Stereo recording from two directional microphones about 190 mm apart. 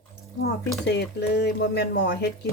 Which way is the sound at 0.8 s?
60° left (ahead or behind).